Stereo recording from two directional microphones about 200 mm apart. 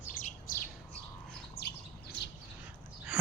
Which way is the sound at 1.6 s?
55° left (ahead or behind).